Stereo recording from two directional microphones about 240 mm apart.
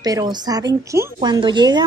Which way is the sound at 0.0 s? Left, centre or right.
Centre.